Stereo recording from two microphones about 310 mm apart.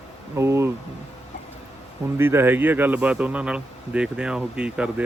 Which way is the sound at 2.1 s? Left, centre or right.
Centre.